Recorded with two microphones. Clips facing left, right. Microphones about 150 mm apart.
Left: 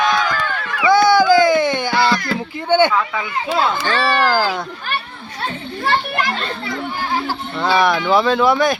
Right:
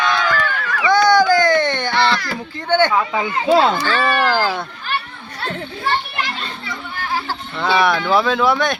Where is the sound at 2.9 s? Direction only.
25° right (ahead or behind).